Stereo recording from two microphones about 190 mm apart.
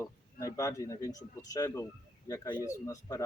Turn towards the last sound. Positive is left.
turn(degrees=15)  # may be behind; listen again after turning